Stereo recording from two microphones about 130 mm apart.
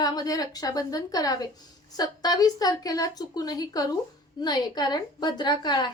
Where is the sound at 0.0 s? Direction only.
30° left (ahead or behind).